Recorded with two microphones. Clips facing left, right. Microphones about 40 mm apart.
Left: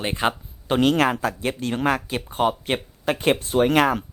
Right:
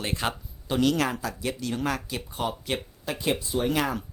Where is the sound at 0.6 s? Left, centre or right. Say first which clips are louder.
Left 5 dB; left.